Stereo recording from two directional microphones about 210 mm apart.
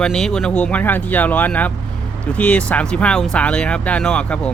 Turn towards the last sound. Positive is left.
turn(degrees=5)  # may be behind; listen again after turning